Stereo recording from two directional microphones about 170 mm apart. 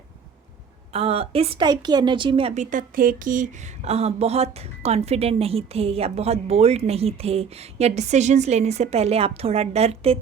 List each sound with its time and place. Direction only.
0.9 s a woman's voice: 35° right (ahead or behind)